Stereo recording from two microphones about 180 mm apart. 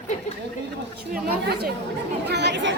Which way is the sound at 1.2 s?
60° right (ahead or behind).